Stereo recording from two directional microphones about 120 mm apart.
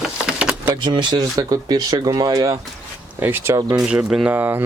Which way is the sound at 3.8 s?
5° right (ahead or behind).